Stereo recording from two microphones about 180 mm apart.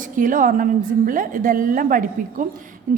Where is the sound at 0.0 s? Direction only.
45° right (ahead or behind).